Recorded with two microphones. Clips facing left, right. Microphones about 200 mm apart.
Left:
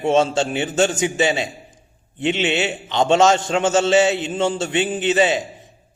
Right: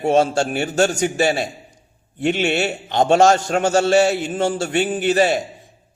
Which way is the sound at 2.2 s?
50° right (ahead or behind).